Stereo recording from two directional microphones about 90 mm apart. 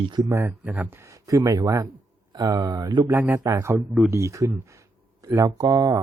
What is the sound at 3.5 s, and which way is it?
Speech, 35° right (ahead or behind).